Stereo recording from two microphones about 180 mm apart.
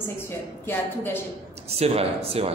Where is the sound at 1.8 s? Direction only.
35° right (ahead or behind).